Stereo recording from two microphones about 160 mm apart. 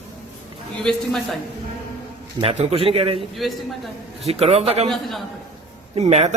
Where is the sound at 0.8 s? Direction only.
5° left (ahead or behind).